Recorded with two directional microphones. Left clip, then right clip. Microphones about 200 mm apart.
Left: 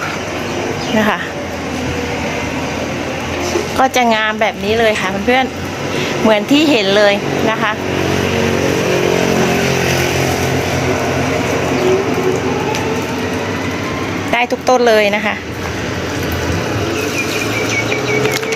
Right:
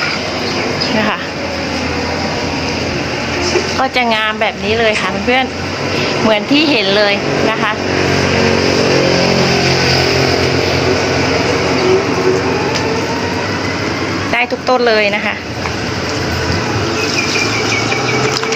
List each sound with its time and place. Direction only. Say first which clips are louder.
3.8 s speech: left 4 dB; 35° left (ahead or behind)
14.3 s speech: left 1 dB; 25° left (ahead or behind)